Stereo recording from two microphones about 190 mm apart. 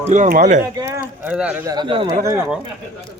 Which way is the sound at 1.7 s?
25° right (ahead or behind).